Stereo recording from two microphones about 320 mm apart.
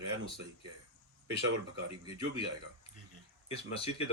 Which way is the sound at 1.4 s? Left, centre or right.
Right.